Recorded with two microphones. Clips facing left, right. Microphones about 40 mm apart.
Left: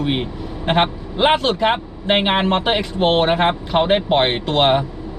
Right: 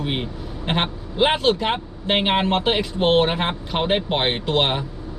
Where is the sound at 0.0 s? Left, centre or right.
Centre.